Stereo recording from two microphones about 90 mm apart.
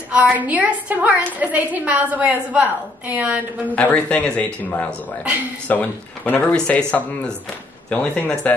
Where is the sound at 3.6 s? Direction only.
15° left (ahead or behind).